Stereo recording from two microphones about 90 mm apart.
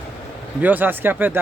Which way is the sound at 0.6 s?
20° right (ahead or behind).